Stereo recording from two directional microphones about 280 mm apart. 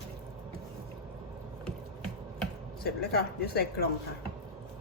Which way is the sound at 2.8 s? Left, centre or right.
Left.